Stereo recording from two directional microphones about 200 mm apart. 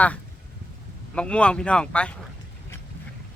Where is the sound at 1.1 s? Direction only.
5° left (ahead or behind).